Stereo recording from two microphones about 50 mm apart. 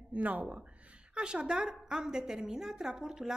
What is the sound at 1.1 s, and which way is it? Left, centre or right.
A woman's voice, centre.